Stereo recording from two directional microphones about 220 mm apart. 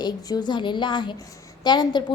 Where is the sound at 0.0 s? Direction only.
20° left (ahead or behind).